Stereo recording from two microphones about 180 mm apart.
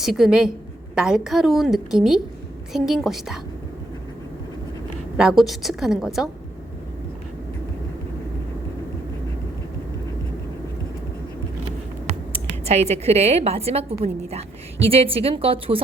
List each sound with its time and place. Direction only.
0.0 s a woman's voice: 5° right (ahead or behind)
5.1 s a woman's voice: centre (ahead or behind)
12.0 s speech: 35° right (ahead or behind)